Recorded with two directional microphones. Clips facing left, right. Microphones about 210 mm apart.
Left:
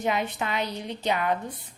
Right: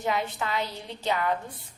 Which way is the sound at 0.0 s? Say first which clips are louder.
Left 2 dB; 20° left (ahead or behind).